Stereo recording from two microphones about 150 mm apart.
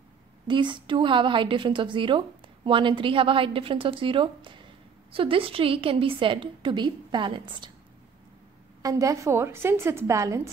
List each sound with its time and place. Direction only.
0.5 s a woman's voice: 30° right (ahead or behind)
8.8 s a woman's voice: 20° right (ahead or behind)